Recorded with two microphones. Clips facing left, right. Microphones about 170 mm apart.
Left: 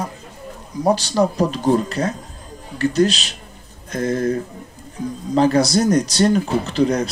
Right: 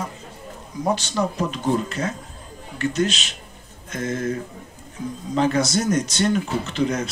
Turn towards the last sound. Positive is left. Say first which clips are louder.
# left 5 dB
turn(degrees=35)  # may be behind; listen again after turning